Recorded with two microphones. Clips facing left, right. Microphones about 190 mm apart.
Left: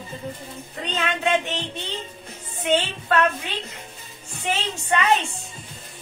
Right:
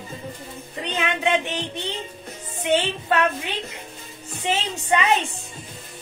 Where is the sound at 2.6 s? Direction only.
15° right (ahead or behind).